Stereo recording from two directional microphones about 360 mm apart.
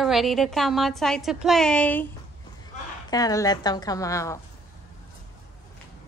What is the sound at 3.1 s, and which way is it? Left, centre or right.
A woman's voice, centre.